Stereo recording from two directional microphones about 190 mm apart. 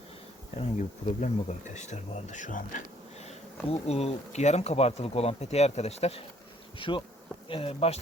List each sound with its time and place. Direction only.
0.5 s speech: 40° left (ahead or behind)
6.7 s bee: 25° left (ahead or behind)
7.4 s speech: 30° left (ahead or behind)